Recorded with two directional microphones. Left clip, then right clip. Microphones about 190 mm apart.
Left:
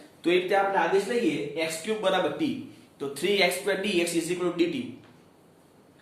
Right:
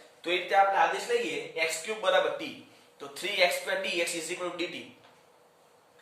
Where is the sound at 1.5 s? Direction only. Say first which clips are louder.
Left 2 dB; 15° left (ahead or behind).